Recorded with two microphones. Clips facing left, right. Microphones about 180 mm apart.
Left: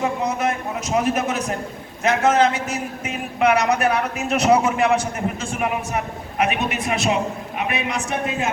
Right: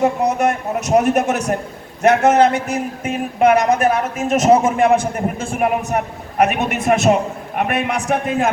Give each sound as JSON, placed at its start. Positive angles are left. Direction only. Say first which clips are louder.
{"t": 0.2, "sound": "a man's voice", "louder": "right 5 dB", "side_deg": -70}